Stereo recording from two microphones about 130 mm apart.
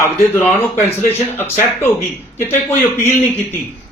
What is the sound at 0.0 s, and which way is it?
Speech, 20° left (ahead or behind).